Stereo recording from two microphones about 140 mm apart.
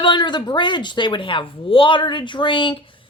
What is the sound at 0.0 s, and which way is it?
Speech, 35° left (ahead or behind).